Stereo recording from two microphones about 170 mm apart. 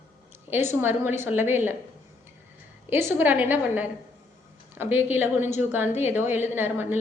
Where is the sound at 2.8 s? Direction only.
15° right (ahead or behind).